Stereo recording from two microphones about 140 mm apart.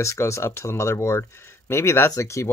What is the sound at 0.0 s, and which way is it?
Speech, 20° left (ahead or behind).